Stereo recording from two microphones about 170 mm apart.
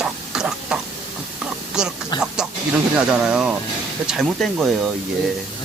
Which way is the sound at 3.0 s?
5° right (ahead or behind).